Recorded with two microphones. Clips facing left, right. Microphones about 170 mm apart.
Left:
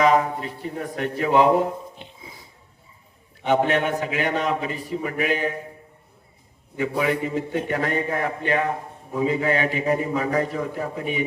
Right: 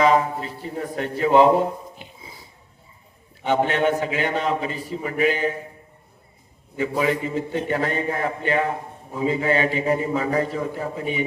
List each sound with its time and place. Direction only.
0.0 s a man's voice: 30° right (ahead or behind)
2.0 s a sound: 5° right (ahead or behind)
3.4 s a man's voice: 30° right (ahead or behind)
6.7 s a man's voice: 30° right (ahead or behind)